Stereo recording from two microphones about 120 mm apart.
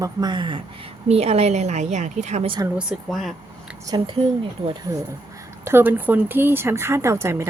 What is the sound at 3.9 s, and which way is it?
Speech, 40° right (ahead or behind).